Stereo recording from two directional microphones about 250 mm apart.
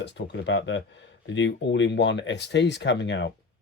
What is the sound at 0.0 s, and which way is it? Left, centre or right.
Speech, left.